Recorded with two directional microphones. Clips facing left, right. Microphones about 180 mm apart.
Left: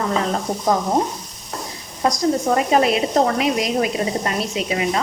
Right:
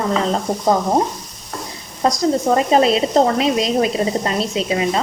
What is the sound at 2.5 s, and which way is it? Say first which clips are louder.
Speech: right 3 dB; 30° right (ahead or behind).